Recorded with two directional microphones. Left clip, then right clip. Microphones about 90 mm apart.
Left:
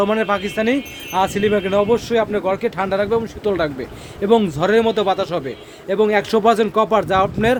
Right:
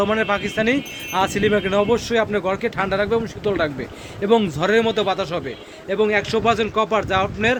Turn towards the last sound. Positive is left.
turn(degrees=50)  # may be behind; listen again after turning